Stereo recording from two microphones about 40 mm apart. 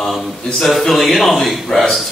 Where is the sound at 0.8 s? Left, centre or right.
Centre.